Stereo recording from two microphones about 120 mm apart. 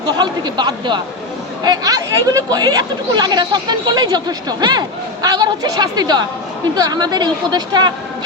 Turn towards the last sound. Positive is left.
turn(degrees=-35)  # may be behind; listen again after turning